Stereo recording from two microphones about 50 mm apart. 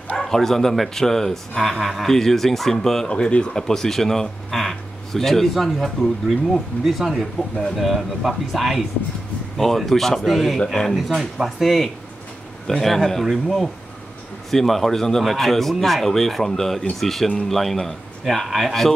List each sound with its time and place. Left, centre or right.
0.2 s speech: centre
3.1 s speech: left
3.5 s speech: centre
11.1 s speech: centre